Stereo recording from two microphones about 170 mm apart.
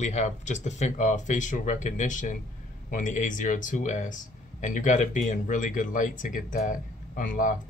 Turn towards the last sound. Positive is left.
turn(degrees=50)  # may be behind; listen again after turning